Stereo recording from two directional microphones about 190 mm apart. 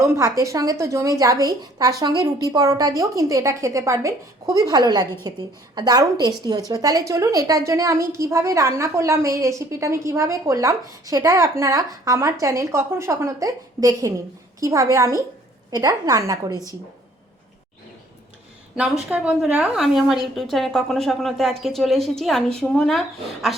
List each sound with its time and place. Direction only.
0.0 s a woman's voice: 15° right (ahead or behind)
18.8 s a woman's voice: 5° right (ahead or behind)